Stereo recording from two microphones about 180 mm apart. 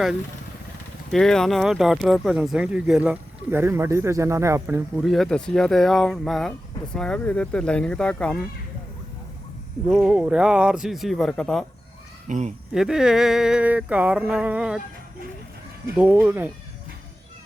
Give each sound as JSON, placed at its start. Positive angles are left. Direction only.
{"t": 1.1, "sound": "speech", "side_deg": 5}
{"t": 5.0, "sound": "speech", "side_deg": 0}
{"t": 9.9, "sound": "speech", "side_deg": -5}
{"t": 12.3, "sound": "speech", "side_deg": -40}
{"t": 12.7, "sound": "speech", "side_deg": -5}
{"t": 16.0, "sound": "speech", "side_deg": -10}